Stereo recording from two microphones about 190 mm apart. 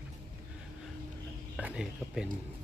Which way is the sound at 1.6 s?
5° right (ahead or behind).